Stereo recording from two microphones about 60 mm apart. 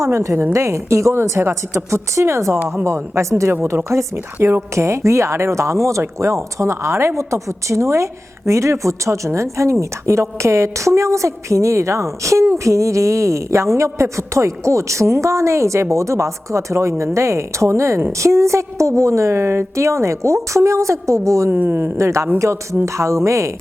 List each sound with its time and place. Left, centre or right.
0.0 s a woman's voice: right
21.5 s speech: right
21.9 s a woman's voice: right